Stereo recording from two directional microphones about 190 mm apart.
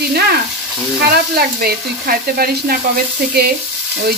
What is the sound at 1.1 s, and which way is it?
Sizzle, 55° right (ahead or behind).